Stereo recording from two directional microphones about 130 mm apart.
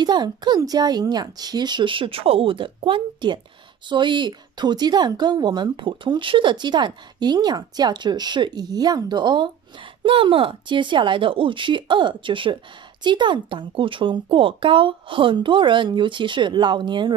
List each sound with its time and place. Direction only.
0.0 s speech: 35° right (ahead or behind)